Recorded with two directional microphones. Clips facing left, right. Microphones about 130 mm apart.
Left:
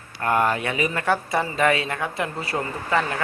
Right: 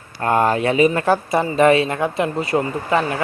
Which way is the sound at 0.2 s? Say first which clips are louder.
Right 4 dB; 30° right (ahead or behind).